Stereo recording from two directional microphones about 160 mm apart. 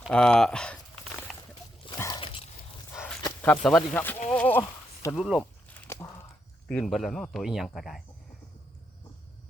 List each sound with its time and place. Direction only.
0.0 s speech: 5° left (ahead or behind)
1.3 s slosh: centre (ahead or behind)
2.0 s dog: 25° left (ahead or behind)
2.9 s a sound: 15° left (ahead or behind)
3.4 s speech: 5° left (ahead or behind)
4.3 s horse: 10° left (ahead or behind)
5.1 s speech: 5° right (ahead or behind)
5.6 s a sound: 10° left (ahead or behind)
6.7 s speech: 5° left (ahead or behind)